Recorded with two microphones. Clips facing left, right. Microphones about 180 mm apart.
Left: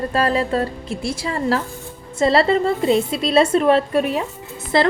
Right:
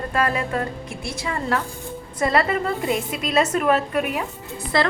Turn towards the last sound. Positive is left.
turn(degrees=25)  # may be behind; listen again after turning